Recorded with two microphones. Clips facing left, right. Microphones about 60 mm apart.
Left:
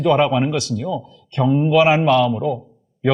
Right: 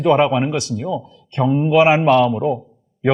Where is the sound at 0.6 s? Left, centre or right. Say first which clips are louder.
Even; right.